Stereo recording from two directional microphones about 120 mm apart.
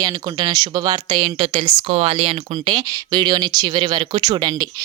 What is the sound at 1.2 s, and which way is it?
Speech, 55° right (ahead or behind).